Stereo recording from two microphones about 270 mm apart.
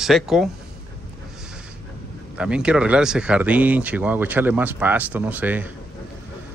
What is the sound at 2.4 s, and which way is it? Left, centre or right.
Speech, centre.